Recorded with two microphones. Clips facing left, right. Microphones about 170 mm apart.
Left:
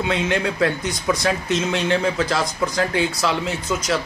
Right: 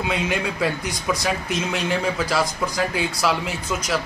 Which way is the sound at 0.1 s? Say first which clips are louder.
Left 3 dB; 10° right (ahead or behind).